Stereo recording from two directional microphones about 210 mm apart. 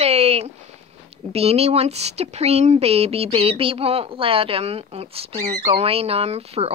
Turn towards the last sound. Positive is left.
turn(degrees=-30)  # may be behind; listen again after turning